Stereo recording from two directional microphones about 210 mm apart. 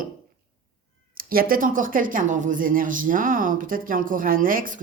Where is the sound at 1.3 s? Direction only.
45° right (ahead or behind).